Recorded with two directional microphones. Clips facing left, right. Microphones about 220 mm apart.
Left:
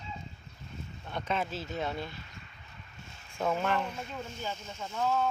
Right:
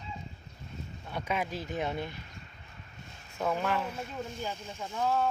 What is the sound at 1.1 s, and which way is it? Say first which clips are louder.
Speech: even; 10° right (ahead or behind).